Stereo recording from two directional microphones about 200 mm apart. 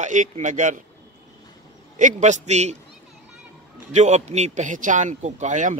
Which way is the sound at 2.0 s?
40° right (ahead or behind).